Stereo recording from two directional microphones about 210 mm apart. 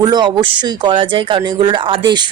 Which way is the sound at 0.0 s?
20° right (ahead or behind).